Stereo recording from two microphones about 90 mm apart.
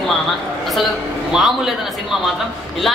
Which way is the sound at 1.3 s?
5° right (ahead or behind).